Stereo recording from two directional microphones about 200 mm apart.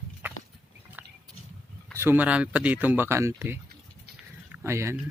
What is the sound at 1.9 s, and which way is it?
Speech, 10° right (ahead or behind).